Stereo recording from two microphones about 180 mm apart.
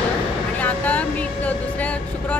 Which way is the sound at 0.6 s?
10° left (ahead or behind).